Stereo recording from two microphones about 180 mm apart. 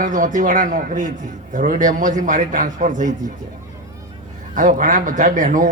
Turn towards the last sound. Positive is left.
turn(degrees=-45)  # may be behind; listen again after turning